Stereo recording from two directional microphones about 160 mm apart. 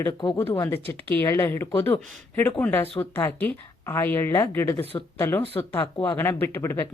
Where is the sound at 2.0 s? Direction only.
50° right (ahead or behind).